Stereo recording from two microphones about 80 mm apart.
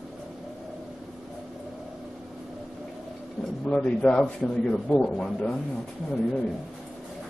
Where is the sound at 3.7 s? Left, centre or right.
Centre.